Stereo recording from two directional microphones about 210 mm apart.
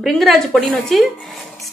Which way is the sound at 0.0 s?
Centre (ahead or behind).